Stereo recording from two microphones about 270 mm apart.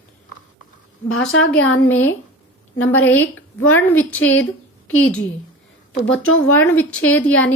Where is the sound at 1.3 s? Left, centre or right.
Left.